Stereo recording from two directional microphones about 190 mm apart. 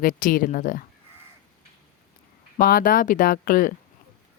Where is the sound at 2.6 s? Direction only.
50° left (ahead or behind).